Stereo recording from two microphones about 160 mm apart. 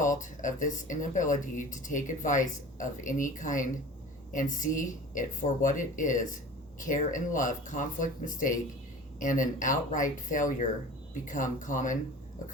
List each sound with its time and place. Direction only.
0.0 s a woman's voice: 55° left (ahead or behind)